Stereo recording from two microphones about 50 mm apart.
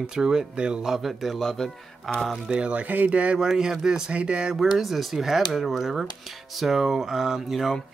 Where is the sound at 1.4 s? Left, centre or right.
Centre.